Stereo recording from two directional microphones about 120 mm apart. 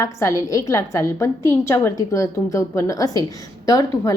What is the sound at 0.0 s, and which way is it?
A woman's voice, 25° left (ahead or behind).